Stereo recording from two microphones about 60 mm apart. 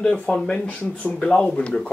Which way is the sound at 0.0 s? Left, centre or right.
Centre.